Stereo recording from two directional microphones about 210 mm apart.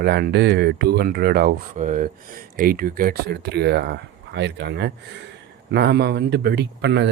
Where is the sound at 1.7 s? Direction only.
35° right (ahead or behind).